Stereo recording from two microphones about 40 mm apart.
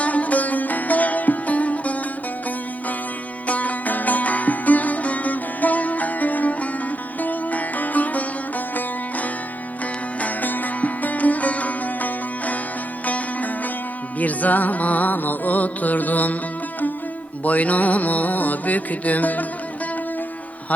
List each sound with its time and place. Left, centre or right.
0.0 s music: left
3.4 s music: left
10.2 s sitar: left
13.1 s music: left
17.4 s music: left